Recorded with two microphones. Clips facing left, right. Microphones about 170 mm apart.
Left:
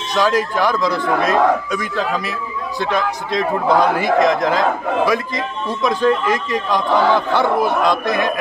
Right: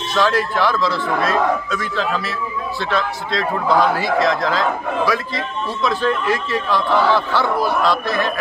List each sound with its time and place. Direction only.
0.1 s a man's voice: 15° left (ahead or behind)